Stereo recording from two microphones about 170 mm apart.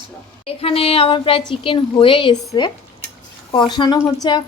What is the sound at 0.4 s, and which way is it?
A woman's voice, 35° left (ahead or behind).